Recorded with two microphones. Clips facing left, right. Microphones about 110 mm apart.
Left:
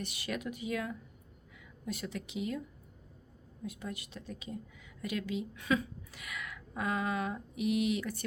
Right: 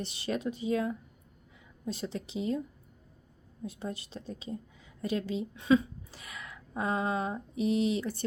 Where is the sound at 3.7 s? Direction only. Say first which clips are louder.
Right 3 dB; 30° right (ahead or behind).